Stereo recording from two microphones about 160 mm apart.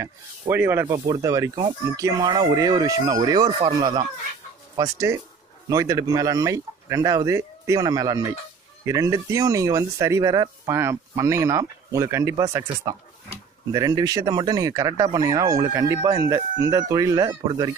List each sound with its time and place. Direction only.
0.0 s speech: 15° right (ahead or behind)
13.7 s speech: 25° right (ahead or behind)